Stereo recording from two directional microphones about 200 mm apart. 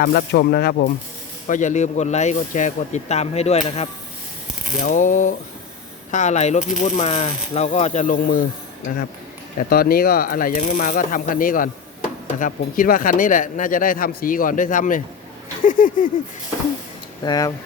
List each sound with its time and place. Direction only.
0.0 s speech: 50° left (ahead or behind)
1.5 s speech: 40° left (ahead or behind)
9.6 s speech: 50° left (ahead or behind)
17.2 s speech: 20° left (ahead or behind)